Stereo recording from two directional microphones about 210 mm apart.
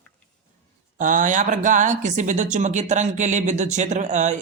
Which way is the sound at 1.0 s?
40° right (ahead or behind).